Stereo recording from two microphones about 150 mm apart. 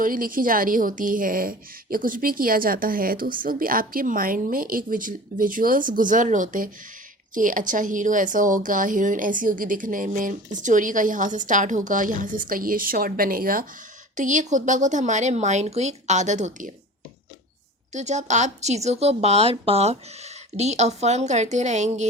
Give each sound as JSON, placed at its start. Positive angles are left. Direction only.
{"t": 0.0, "sound": "a woman's voice", "side_deg": -65}
{"t": 14.2, "sound": "a woman's voice", "side_deg": -55}
{"t": 17.9, "sound": "a woman's voice", "side_deg": -50}